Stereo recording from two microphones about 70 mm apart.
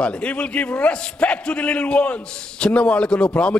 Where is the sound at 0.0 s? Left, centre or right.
Centre.